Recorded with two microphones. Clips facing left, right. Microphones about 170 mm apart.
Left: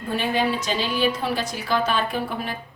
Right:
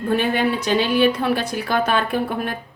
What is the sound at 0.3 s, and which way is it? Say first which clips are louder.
A woman's voice: right 4 dB; 60° right (ahead or behind).